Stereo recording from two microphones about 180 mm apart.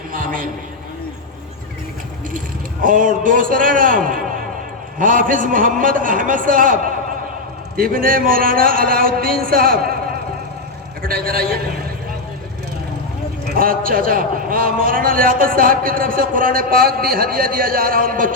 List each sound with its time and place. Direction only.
0.1 s a sound: 50° right (ahead or behind)
2.8 s a man's voice: 50° right (ahead or behind)
11.0 s a man's voice: 55° right (ahead or behind)
13.4 s a man's voice: 55° right (ahead or behind)